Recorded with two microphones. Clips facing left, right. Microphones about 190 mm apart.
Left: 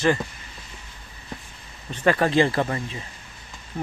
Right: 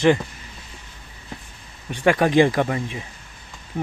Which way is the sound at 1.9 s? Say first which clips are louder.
Right 2 dB; 15° right (ahead or behind).